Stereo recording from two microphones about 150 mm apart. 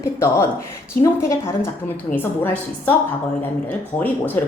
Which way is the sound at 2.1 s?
10° left (ahead or behind).